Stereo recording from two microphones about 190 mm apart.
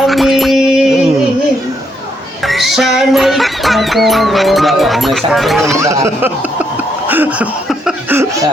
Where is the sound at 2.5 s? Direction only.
Centre (ahead or behind).